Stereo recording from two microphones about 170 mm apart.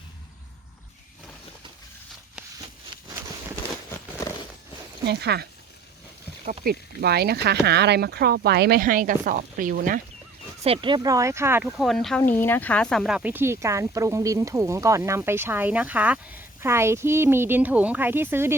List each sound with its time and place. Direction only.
5.0 s speech: 75° right (ahead or behind)
6.4 s speech: 55° right (ahead or behind)
10.6 s speech: 30° right (ahead or behind); by 11.7 s 15° right (ahead or behind)
11.8 s speech: centre (ahead or behind)